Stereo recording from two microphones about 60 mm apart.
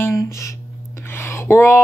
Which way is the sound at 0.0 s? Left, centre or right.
Left.